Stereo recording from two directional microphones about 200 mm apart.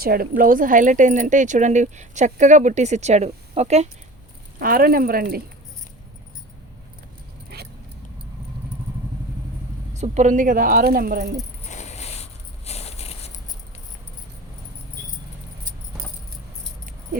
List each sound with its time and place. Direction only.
0.0 s speech: 50° right (ahead or behind)
4.6 s speech: 45° right (ahead or behind)
9.9 s speech: 35° right (ahead or behind)
11.7 s a sound: 35° left (ahead or behind)